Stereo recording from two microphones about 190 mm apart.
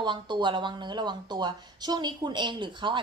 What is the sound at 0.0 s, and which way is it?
Speech, 25° right (ahead or behind).